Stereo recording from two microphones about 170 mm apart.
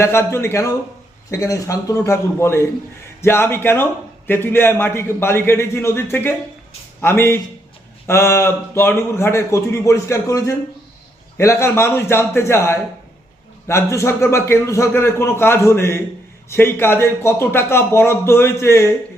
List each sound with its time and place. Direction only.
0.0 s a man's voice: 15° left (ahead or behind)